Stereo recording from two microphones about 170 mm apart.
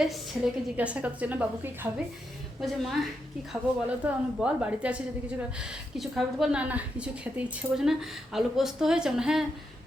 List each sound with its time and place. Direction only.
0.4 s a woman's voice: centre (ahead or behind)
2.6 s a woman's voice: centre (ahead or behind)